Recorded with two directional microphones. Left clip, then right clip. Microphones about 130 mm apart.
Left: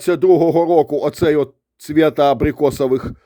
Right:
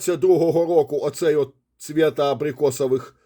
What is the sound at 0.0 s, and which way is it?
Speech, 30° left (ahead or behind).